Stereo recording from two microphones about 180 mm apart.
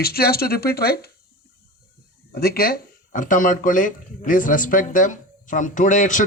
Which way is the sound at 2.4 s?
60° left (ahead or behind).